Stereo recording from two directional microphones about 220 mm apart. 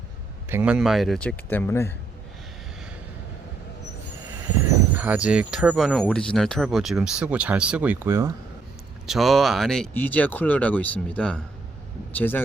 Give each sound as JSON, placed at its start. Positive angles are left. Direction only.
{"t": 0.4, "sound": "speech", "side_deg": -10}
{"t": 4.9, "sound": "speech", "side_deg": -5}
{"t": 9.0, "sound": "speech", "side_deg": 0}